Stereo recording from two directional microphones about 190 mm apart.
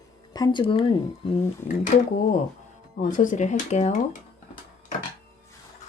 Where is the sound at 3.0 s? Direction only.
45° left (ahead or behind).